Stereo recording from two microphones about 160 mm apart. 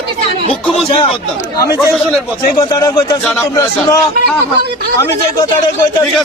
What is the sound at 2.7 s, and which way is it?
Speech, 25° left (ahead or behind).